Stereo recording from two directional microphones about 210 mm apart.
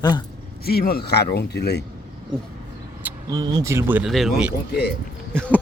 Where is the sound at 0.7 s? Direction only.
45° left (ahead or behind).